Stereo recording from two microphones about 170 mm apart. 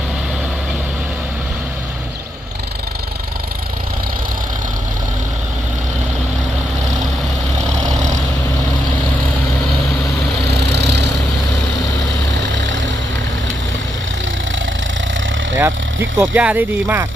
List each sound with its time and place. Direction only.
7.9 s vehicle: 45° right (ahead or behind)
10.7 s vehicle: 80° right
15.5 s a sound: 10° right (ahead or behind)
16.2 s speech: 10° right (ahead or behind)